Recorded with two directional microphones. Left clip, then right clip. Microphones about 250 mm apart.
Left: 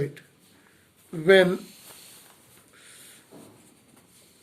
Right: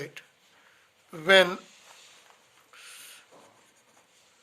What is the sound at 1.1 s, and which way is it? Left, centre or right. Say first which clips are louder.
Speech: left 2 dB; right.